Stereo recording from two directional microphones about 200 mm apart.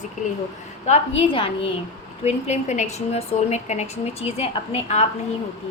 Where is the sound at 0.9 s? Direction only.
25° left (ahead or behind).